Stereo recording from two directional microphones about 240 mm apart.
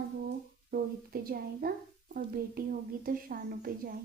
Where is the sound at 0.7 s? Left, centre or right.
Right.